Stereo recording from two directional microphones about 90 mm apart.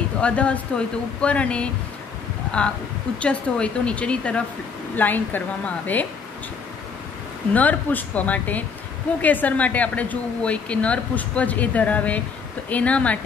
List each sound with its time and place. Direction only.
0.2 s a woman's voice: 15° left (ahead or behind)
3.2 s a woman's voice: 10° left (ahead or behind)
7.5 s a woman's voice: 15° left (ahead or behind)